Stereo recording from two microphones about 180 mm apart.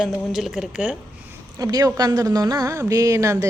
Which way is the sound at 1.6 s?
20° right (ahead or behind).